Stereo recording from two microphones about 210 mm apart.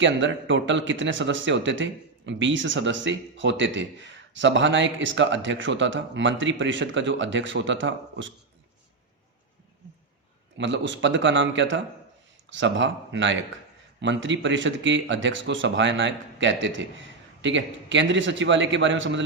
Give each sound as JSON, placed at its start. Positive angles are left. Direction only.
{"t": 0.0, "sound": "speech", "side_deg": -60}
{"t": 10.6, "sound": "speech", "side_deg": -60}